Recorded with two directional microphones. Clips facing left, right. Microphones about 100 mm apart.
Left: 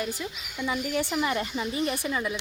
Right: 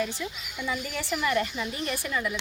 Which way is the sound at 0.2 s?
15° left (ahead or behind).